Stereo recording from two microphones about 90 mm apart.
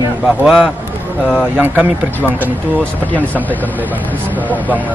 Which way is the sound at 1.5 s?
20° right (ahead or behind).